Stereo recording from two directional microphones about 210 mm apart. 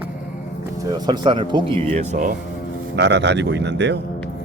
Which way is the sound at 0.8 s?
20° right (ahead or behind).